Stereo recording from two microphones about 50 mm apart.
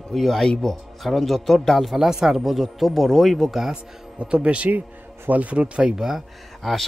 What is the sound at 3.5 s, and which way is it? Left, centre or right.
Speech, centre.